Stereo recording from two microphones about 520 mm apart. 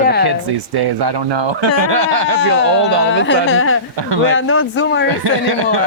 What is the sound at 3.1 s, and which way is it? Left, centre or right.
Speech, left.